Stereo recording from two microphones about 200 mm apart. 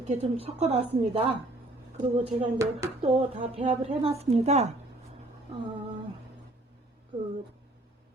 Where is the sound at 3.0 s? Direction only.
30° right (ahead or behind).